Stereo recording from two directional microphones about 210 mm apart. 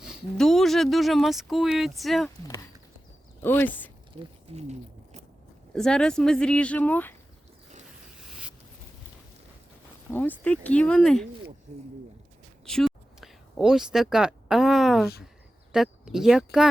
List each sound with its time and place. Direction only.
0.0 s speech: centre (ahead or behind)
3.4 s speech: 10° left (ahead or behind)
4.2 s a sound: 30° right (ahead or behind)
5.7 s speech: 5° left (ahead or behind)
8.3 s a sound: 5° right (ahead or behind)
10.1 s speech: 10° left (ahead or behind)
11.7 s speech: 35° right (ahead or behind)
12.6 s speech: centre (ahead or behind)